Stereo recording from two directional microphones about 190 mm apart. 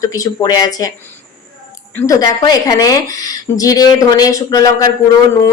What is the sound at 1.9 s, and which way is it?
A woman's voice, 15° left (ahead or behind).